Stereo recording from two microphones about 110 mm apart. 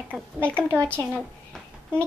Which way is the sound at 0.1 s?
10° left (ahead or behind).